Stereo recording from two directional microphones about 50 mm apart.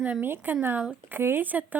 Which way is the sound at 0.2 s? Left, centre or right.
Right.